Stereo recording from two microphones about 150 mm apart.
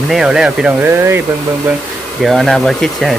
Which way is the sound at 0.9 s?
15° right (ahead or behind).